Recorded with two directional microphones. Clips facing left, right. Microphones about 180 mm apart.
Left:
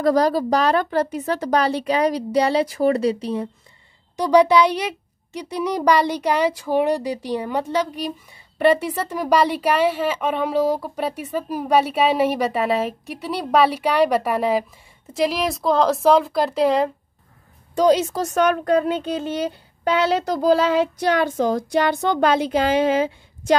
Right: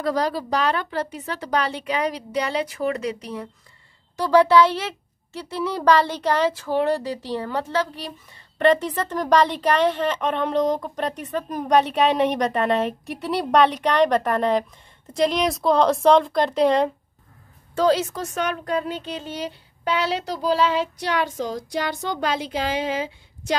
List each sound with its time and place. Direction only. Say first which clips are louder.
0.0 s a woman's voice: left 6 dB; 40° left (ahead or behind)
4.2 s a woman's voice: left 1 dB; 15° left (ahead or behind)
17.7 s a woman's voice: left 3 dB; 20° left (ahead or behind)
18.1 s speech: left 7 dB; 45° left (ahead or behind)